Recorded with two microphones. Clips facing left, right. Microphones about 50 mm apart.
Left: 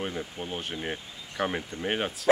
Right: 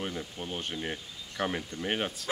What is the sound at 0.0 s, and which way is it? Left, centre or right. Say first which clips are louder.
Speech: left 3 dB; centre.